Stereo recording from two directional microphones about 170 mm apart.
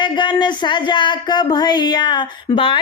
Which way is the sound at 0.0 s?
25° left (ahead or behind).